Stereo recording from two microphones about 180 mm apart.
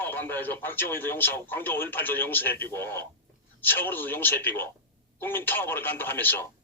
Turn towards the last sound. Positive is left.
turn(degrees=10)  # may be behind; listen again after turning